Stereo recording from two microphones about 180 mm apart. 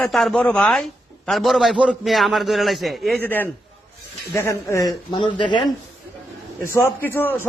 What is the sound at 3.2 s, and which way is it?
A man's voice, 10° left (ahead or behind).